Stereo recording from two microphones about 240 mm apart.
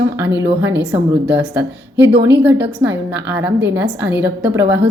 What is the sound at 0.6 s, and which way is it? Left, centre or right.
Speech, right.